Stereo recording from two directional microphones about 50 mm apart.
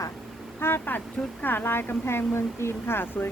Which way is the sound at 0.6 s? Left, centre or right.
Left.